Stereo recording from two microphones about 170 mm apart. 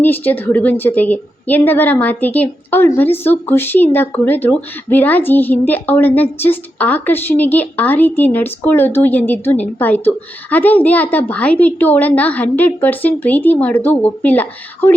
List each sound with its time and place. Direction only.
0.0 s a woman's voice: 10° left (ahead or behind)